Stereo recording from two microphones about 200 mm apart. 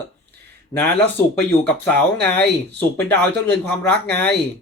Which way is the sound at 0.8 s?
10° left (ahead or behind).